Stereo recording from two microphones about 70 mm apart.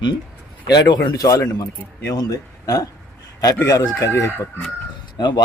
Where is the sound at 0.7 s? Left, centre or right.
Left.